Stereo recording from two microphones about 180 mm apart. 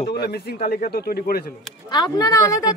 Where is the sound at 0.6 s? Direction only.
50° left (ahead or behind).